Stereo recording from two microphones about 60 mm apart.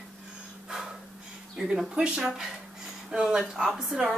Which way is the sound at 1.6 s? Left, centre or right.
Centre.